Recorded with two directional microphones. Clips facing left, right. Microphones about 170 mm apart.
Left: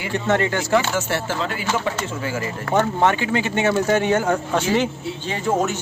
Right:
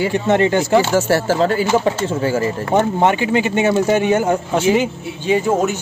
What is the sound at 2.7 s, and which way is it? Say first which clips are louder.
Speech: right 2 dB; 15° right (ahead or behind).